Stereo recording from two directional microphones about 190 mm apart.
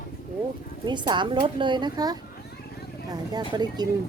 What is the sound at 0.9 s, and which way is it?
A woman's voice, 25° right (ahead or behind).